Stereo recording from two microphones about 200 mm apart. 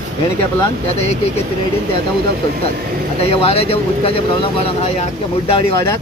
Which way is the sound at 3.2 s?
30° left (ahead or behind).